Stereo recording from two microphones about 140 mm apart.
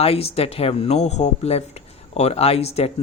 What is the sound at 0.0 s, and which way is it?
Speech, 45° left (ahead or behind).